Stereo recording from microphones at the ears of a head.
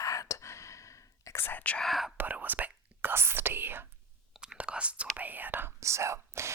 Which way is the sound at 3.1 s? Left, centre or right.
Right.